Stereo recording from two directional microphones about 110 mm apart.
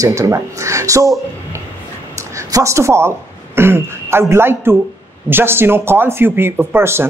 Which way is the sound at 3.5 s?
20° right (ahead or behind).